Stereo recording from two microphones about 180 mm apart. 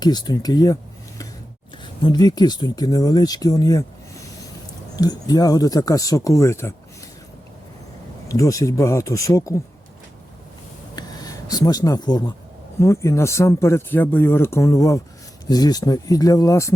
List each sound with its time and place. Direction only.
0.0 s speech: 25° left (ahead or behind)
1.8 s speech: 25° left (ahead or behind)
8.3 s speech: 20° left (ahead or behind)
10.9 s a sound: 20° left (ahead or behind)
12.8 s speech: 15° left (ahead or behind)